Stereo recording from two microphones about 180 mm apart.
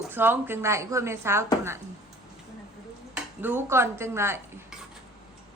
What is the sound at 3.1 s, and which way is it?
Speech, 10° right (ahead or behind).